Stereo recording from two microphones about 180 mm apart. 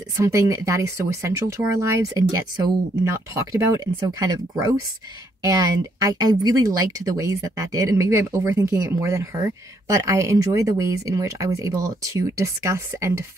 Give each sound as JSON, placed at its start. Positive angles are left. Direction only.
{"t": 0.2, "sound": "speech", "side_deg": -15}